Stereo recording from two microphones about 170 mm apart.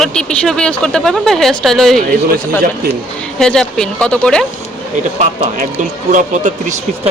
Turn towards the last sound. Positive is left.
turn(degrees=-45)  # may be behind; listen again after turning